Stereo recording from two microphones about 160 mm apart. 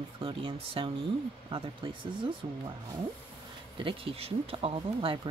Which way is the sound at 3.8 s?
35° right (ahead or behind).